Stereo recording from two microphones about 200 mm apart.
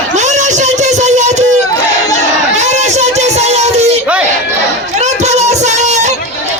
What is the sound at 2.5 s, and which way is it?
Child singing, 35° right (ahead or behind).